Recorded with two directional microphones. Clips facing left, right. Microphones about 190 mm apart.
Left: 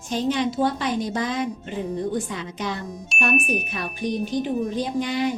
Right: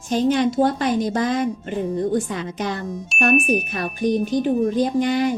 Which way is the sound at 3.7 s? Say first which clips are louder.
Right 6 dB; 45° right (ahead or behind).